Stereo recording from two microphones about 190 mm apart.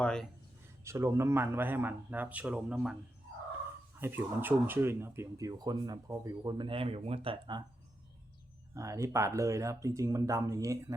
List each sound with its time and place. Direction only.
0.0 s speech: 5° left (ahead or behind)
0.9 s speech: 15° right (ahead or behind)
4.0 s speech: 10° right (ahead or behind); by 7.6 s 25° right (ahead or behind)
8.7 s speech: 15° right (ahead or behind)